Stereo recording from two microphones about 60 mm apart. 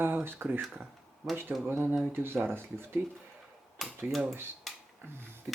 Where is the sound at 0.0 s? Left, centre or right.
Right.